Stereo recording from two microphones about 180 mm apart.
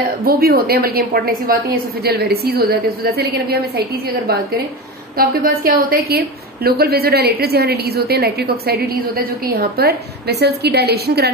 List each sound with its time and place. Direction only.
0.2 s a woman's voice: 55° right (ahead or behind)
5.1 s a woman's voice: 55° right (ahead or behind)